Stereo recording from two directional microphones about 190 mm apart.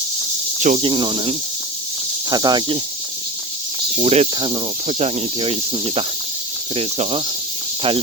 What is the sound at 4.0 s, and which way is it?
Speech, 35° right (ahead or behind).